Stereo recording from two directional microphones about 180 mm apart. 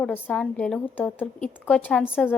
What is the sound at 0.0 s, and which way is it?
A woman's voice, 5° left (ahead or behind).